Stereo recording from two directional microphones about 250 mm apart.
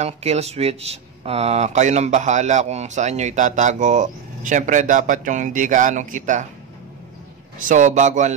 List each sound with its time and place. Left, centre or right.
0.0 s speech: right
7.5 s speech: right